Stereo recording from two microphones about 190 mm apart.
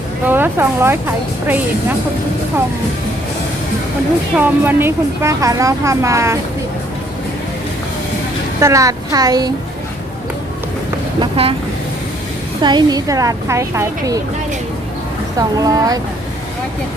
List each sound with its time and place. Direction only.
0.3 s speech: 10° right (ahead or behind)
4.4 s speech: 10° right (ahead or behind)
8.6 s a woman's voice: 15° right (ahead or behind)
11.2 s a woman's voice: 30° right (ahead or behind)
12.6 s speech: 20° right (ahead or behind)
15.4 s a woman's voice: 20° right (ahead or behind)